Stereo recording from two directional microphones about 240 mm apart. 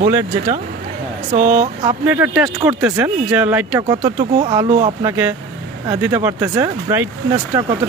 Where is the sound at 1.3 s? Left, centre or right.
Right.